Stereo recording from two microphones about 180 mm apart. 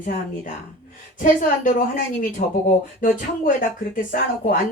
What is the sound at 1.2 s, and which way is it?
A woman's voice, 45° left (ahead or behind).